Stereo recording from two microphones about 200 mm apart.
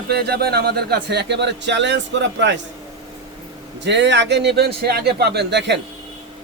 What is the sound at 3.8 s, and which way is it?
A man's voice, 60° right (ahead or behind).